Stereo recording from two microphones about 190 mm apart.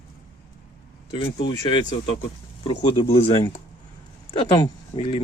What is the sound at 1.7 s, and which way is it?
Speech, 25° left (ahead or behind).